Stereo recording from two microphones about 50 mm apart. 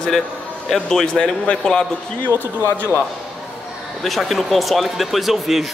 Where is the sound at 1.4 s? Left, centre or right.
Left.